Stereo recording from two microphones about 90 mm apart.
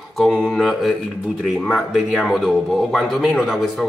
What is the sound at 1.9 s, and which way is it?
A man's voice, centre (ahead or behind).